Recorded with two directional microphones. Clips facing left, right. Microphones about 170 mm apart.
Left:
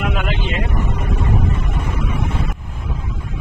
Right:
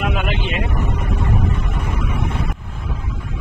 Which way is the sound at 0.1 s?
20° right (ahead or behind).